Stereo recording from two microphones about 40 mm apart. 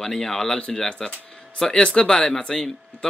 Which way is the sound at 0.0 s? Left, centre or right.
Centre.